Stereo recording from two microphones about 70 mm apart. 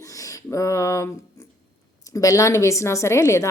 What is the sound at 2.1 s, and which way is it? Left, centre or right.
A woman's voice, left.